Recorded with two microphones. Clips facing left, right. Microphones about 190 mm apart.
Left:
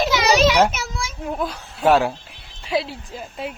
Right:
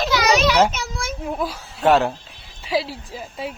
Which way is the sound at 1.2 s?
Centre (ahead or behind).